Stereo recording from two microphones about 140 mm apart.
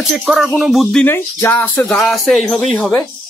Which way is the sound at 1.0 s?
15° left (ahead or behind).